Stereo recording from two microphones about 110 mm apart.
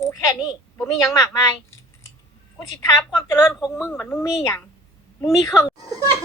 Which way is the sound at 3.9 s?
20° left (ahead or behind).